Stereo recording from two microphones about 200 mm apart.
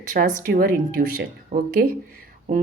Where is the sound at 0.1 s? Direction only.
40° right (ahead or behind).